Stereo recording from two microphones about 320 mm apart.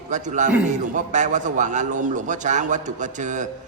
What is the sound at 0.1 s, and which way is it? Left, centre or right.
A man's voice, right.